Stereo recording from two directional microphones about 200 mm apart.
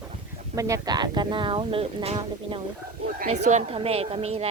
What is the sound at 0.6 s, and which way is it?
Speech, 15° right (ahead or behind).